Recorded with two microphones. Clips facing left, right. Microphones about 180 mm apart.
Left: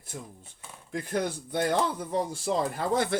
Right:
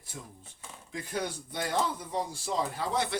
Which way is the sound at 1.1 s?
55° left (ahead or behind).